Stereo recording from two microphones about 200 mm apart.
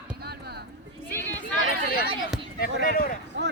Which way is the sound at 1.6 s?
50° left (ahead or behind).